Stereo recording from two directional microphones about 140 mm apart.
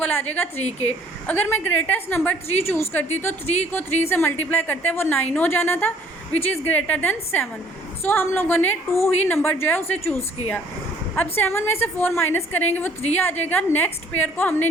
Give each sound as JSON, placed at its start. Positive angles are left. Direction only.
{"t": 0.0, "sound": "a woman's voice", "side_deg": 15}
{"t": 3.4, "sound": "speech", "side_deg": 55}
{"t": 3.7, "sound": "a woman's voice", "side_deg": 15}